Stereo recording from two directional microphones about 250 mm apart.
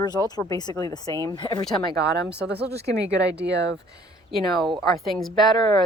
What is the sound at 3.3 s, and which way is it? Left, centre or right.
Speech, right.